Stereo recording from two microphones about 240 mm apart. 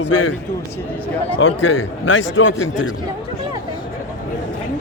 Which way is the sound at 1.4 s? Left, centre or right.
Left.